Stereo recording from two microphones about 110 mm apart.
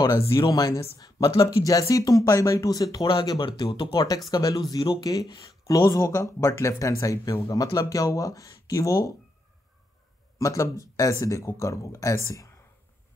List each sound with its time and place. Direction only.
0.5 s speech: 30° left (ahead or behind); by 4.0 s 50° left (ahead or behind)
4.3 s speech: 35° left (ahead or behind)
10.4 s speech: 30° left (ahead or behind)